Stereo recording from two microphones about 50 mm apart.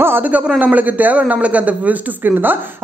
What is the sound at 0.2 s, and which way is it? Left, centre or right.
A woman's voice, right.